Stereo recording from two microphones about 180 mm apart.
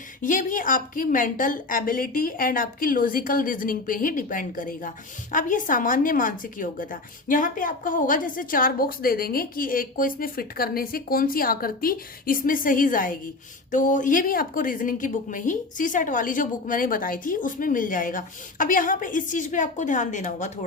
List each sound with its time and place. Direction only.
0.2 s a woman's voice: 45° left (ahead or behind)